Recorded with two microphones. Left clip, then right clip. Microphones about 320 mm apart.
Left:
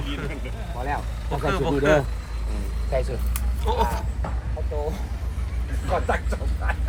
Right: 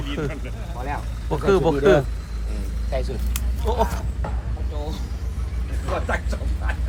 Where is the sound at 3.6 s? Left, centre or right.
Centre.